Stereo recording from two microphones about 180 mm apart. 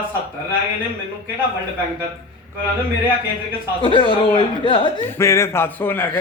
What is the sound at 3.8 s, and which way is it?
Speech, 25° left (ahead or behind).